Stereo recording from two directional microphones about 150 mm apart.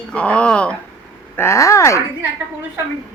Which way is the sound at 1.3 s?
20° left (ahead or behind).